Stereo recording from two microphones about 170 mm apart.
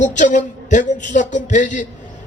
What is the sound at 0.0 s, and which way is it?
Speech, 45° left (ahead or behind).